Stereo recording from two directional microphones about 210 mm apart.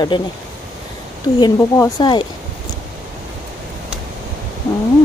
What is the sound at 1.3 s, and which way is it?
Speech, 20° left (ahead or behind).